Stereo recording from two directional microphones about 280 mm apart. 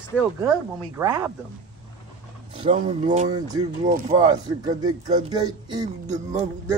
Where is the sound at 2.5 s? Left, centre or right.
Right.